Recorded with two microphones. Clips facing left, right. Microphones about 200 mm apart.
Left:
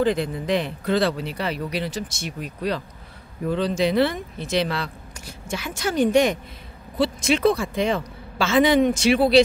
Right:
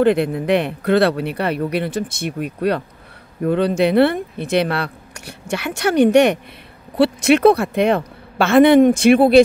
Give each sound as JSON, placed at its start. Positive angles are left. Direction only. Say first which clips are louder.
{"t": 0.0, "sound": "speech", "louder": "right 6 dB", "side_deg": -60}